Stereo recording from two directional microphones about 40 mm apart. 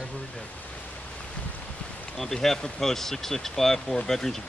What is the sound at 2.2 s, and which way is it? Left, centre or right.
Speech, centre.